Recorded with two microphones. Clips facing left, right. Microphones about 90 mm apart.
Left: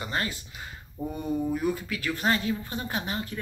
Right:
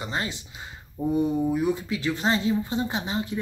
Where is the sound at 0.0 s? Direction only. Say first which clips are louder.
Right 1 dB; 20° right (ahead or behind).